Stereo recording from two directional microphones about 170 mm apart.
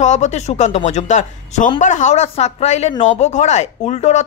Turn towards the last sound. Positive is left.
turn(degrees=40)  # may be behind; listen again after turning